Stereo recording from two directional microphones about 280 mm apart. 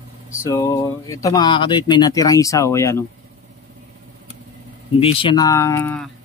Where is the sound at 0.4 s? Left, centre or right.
Centre.